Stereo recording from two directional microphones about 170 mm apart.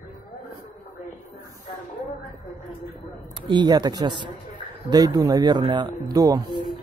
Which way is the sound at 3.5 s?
25° right (ahead or behind).